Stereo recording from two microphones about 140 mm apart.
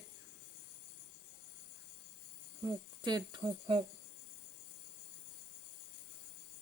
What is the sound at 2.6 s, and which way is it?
Speech, 30° right (ahead or behind).